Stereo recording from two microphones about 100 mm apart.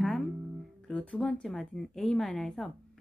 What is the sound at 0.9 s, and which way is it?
A woman's voice, 15° left (ahead or behind).